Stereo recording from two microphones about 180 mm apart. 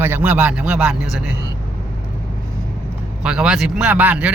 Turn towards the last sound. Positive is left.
turn(degrees=-10)  # may be behind; listen again after turning